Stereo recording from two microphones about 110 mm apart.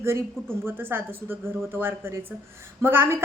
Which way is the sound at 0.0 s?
25° right (ahead or behind).